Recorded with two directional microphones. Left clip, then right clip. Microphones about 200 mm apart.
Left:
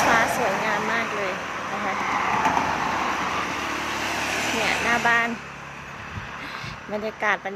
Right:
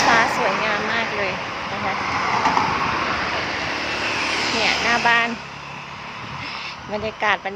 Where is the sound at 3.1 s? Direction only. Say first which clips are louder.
Right 2 dB; 55° left (ahead or behind).